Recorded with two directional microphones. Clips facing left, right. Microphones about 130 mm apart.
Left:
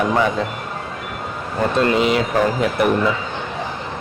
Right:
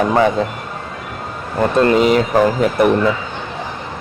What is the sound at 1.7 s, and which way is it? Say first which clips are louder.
Speech: right 5 dB; 40° right (ahead or behind).